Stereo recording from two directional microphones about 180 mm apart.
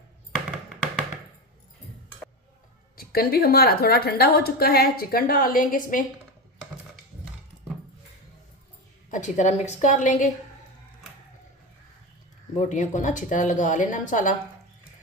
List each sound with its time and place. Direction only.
3.0 s a woman's voice: 55° left (ahead or behind)
9.0 s speech: 40° left (ahead or behind)
12.5 s speech: 40° left (ahead or behind)